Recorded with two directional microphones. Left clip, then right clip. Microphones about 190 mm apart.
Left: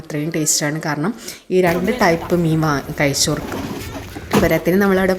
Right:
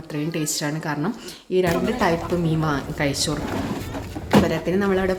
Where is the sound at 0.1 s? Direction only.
20° left (ahead or behind).